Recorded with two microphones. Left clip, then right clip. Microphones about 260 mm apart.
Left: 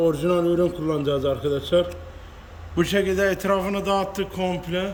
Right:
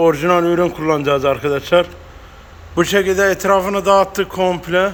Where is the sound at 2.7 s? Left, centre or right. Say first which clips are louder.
Right 7 dB; centre.